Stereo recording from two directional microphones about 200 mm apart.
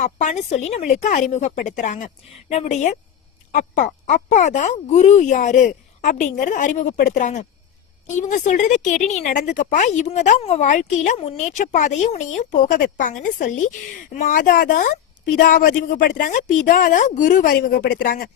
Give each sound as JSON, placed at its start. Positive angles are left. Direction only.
{"t": 0.0, "sound": "a woman's voice", "side_deg": 35}